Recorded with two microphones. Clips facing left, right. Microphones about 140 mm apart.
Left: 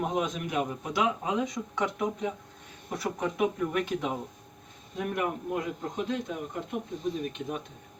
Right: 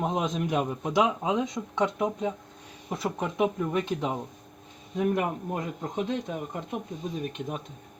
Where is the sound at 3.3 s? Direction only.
25° right (ahead or behind).